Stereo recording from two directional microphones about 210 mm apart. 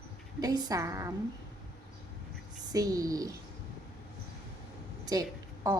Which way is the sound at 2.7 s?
15° right (ahead or behind).